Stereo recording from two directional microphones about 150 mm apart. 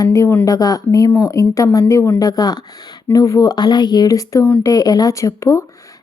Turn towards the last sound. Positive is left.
turn(degrees=20)  # may be behind; listen again after turning